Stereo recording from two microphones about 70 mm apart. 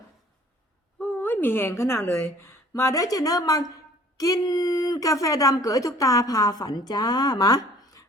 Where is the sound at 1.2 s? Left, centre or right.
Left.